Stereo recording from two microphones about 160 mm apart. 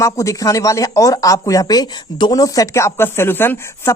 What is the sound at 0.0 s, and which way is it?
Speech, 20° left (ahead or behind).